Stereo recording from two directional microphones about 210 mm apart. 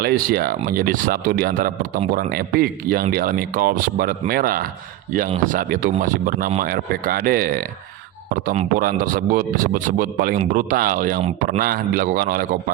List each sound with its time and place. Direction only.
0.0 s speech: 45° right (ahead or behind)